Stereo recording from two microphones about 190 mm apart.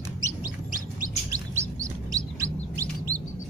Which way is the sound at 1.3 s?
15° right (ahead or behind).